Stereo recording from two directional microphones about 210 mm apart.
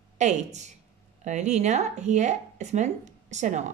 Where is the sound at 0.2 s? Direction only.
35° right (ahead or behind).